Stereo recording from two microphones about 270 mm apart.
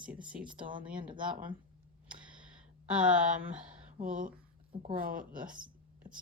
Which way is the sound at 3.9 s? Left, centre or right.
Right.